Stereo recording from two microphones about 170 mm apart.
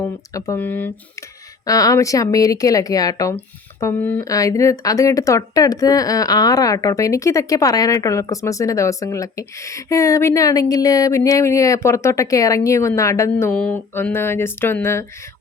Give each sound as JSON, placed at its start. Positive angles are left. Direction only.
{"t": 0.0, "sound": "speech", "side_deg": 15}